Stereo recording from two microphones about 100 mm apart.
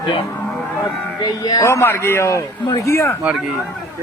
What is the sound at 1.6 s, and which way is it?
A man's voice, 25° left (ahead or behind).